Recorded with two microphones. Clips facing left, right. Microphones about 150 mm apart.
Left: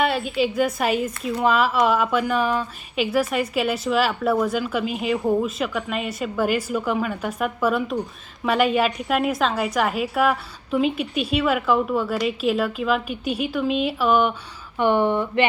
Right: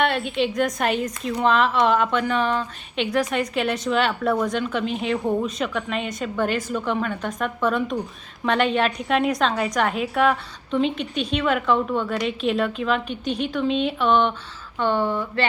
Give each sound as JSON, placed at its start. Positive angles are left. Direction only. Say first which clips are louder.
{"t": 0.0, "sound": "a woman's voice", "louder": "left 1 dB", "side_deg": 5}